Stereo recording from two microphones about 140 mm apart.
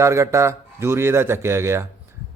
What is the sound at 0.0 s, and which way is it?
A man's voice, 20° right (ahead or behind).